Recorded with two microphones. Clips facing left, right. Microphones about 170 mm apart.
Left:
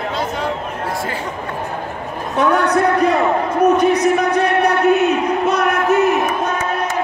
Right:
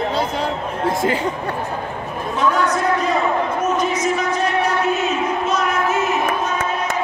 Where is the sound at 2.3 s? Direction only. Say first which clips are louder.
Left 4 dB; 65° left (ahead or behind).